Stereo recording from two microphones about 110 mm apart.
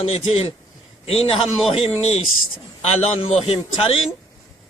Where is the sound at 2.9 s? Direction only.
65° left (ahead or behind).